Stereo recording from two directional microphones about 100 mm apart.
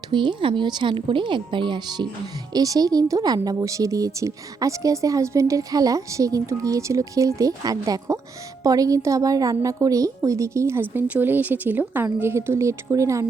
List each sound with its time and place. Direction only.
0.1 s a woman's voice: 50° right (ahead or behind)
2.5 s speech: 40° right (ahead or behind)